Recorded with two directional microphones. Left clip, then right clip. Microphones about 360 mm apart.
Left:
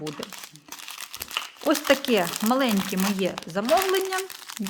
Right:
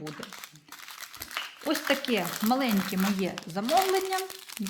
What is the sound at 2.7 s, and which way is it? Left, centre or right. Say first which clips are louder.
Speech: left 3 dB; left.